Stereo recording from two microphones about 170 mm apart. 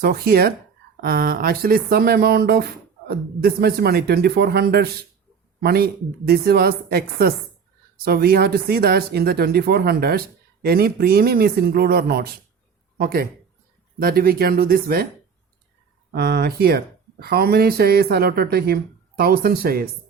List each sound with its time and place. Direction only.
0.0 s speech: 65° right (ahead or behind)
16.1 s speech: 70° right (ahead or behind)